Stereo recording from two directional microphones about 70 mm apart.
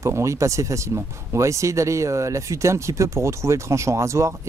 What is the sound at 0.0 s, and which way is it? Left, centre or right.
Speech, right.